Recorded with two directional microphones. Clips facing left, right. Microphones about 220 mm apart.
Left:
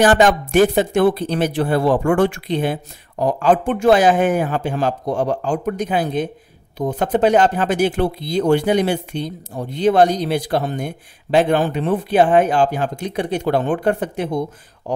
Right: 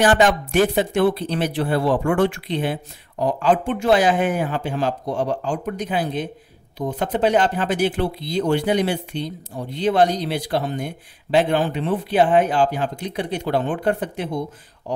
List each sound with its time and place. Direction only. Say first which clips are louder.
0.0 s speech: left 3 dB; 45° left (ahead or behind)